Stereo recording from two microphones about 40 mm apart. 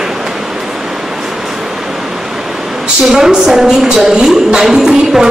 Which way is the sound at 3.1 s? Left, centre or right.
Centre.